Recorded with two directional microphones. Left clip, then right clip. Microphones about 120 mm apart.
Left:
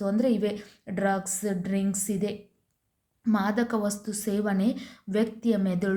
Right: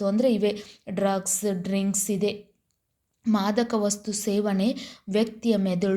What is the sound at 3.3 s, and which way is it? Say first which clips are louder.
A woman's voice: right 3 dB; 25° right (ahead or behind).